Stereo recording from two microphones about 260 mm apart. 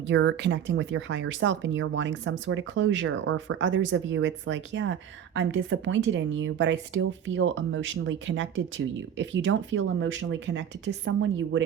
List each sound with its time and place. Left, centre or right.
0.1 s speech: right